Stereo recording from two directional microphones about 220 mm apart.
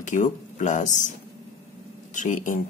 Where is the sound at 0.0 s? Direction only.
35° left (ahead or behind).